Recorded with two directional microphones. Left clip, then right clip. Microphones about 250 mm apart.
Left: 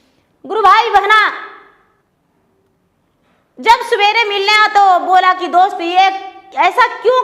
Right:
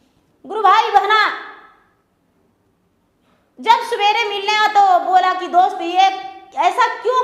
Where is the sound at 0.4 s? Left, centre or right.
Left.